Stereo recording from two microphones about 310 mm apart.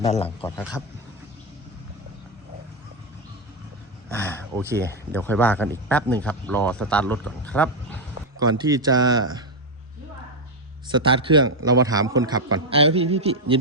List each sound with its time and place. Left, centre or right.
0.0 s a man's voice: centre
0.4 s speech: centre
4.1 s a sound: centre
4.6 s a man's voice: centre
5.1 s speech: centre
8.4 s a man's voice: centre
10.8 s a man's voice: centre